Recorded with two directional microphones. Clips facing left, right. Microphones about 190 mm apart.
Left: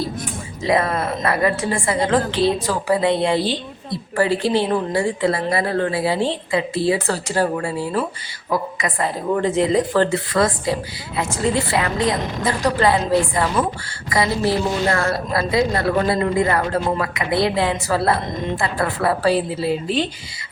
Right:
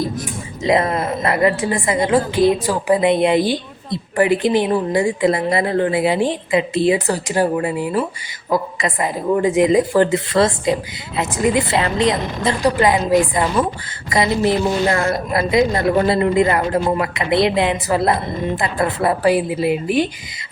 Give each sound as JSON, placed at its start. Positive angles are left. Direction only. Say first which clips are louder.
{"t": 0.6, "sound": "a woman's voice", "louder": "right 2 dB", "side_deg": -20}
{"t": 10.3, "sound": "a woman's voice", "louder": "right 3 dB", "side_deg": -25}
{"t": 11.2, "sound": "a woman's voice", "louder": "right 3 dB", "side_deg": -15}